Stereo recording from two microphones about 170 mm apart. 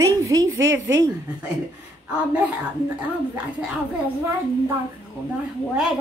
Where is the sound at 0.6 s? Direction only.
90° right.